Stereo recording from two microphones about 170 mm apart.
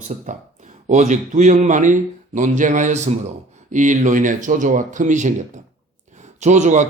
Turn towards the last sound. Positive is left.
turn(degrees=-45)  # may be behind; listen again after turning